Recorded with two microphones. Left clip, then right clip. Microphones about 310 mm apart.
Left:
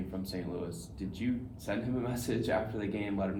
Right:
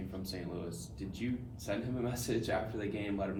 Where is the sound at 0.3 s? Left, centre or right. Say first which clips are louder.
Left 2 dB; left.